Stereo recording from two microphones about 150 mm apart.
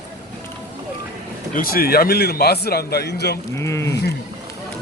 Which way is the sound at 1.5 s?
75° left (ahead or behind).